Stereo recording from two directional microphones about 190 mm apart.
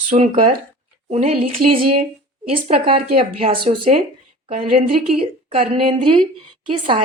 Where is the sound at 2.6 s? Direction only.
30° right (ahead or behind).